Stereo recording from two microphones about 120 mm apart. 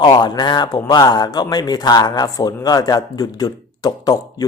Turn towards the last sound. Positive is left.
turn(degrees=35)  # may be behind; listen again after turning